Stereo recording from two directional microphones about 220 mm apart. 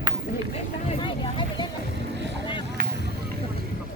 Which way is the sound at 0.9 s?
25° left (ahead or behind).